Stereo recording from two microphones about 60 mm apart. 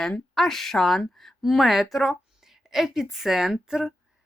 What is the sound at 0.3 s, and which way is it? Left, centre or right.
A woman's voice, centre.